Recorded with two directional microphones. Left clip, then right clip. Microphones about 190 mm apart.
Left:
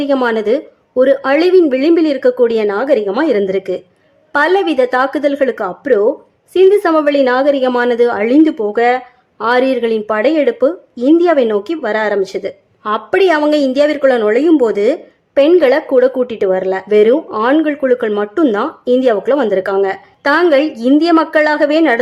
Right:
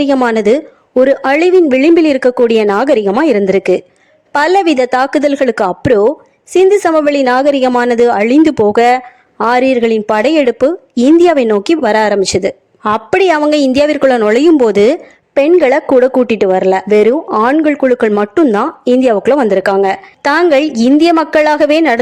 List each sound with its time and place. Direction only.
0.0 s speech: 40° right (ahead or behind)